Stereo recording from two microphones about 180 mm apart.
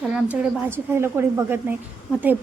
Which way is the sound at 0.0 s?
5° right (ahead or behind).